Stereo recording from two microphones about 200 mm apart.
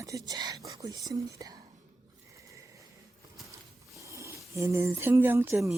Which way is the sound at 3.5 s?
15° right (ahead or behind).